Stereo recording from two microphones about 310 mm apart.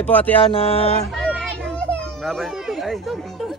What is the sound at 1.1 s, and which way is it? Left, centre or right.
Children playing, centre.